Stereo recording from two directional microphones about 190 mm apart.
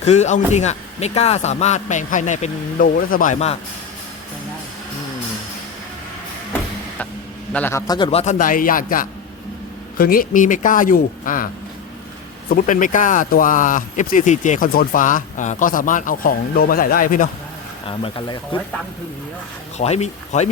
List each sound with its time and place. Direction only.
0.0 s a man's voice: 35° left (ahead or behind)
7.5 s a man's voice: 10° left (ahead or behind)
8.2 s speech: 40° left (ahead or behind)
12.5 s speech: 45° left (ahead or behind)
17.8 s speech: 30° left (ahead or behind)
19.8 s a man's voice: 35° left (ahead or behind)